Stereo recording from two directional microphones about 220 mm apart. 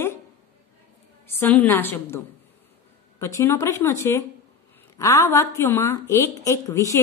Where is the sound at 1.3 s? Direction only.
10° left (ahead or behind).